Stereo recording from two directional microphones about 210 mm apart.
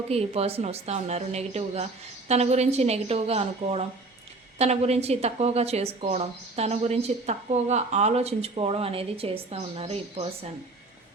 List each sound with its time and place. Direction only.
0.1 s a woman's voice: 30° right (ahead or behind)